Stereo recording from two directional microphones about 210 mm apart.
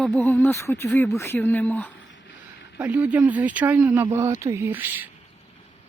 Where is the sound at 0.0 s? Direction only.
5° left (ahead or behind).